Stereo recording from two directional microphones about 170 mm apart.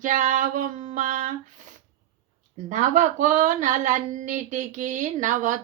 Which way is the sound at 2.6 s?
45° right (ahead or behind).